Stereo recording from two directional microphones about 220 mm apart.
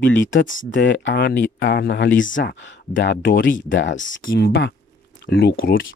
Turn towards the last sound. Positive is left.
turn(degrees=55)  # may be behind; listen again after turning